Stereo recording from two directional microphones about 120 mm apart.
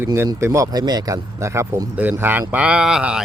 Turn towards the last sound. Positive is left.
turn(degrees=-5)  # may be behind; listen again after turning